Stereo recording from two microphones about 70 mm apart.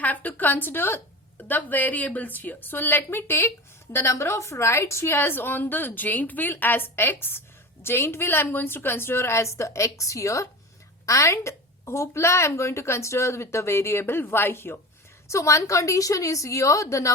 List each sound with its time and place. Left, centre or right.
0.0 s a woman's voice: left